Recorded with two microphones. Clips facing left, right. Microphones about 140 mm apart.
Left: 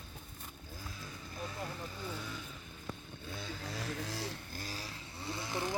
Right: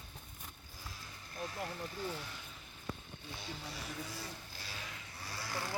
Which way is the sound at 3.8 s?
90° left.